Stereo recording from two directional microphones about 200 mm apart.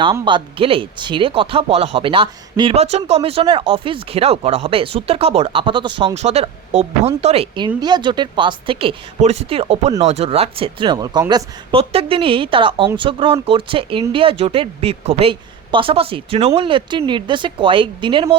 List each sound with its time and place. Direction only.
0.0 s speech: 25° right (ahead or behind)